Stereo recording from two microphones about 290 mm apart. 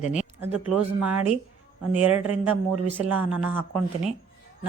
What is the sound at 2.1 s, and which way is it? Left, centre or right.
Speech, right.